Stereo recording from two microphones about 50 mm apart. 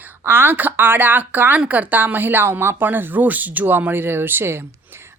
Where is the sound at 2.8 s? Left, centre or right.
Right.